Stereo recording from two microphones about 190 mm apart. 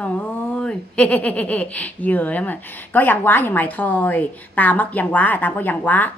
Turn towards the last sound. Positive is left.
turn(degrees=10)  # may be behind; listen again after turning